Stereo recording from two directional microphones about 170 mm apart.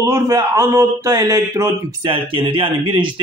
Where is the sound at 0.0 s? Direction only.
20° right (ahead or behind).